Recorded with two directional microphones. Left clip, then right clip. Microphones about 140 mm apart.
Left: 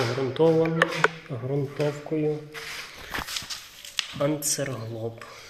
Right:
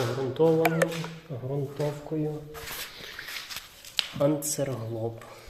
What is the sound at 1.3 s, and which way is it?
Speech, 40° left (ahead or behind).